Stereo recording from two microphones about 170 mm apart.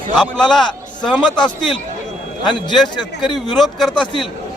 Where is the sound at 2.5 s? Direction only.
25° left (ahead or behind).